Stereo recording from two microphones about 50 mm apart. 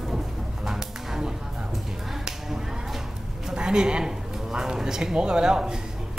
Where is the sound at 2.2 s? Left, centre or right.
Centre.